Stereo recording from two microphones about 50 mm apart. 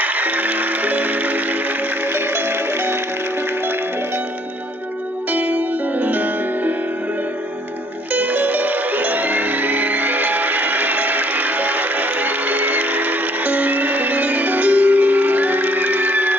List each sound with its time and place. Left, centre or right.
0.0 s music: right
2.1 s music: right
5.3 s music: right
8.1 s music: right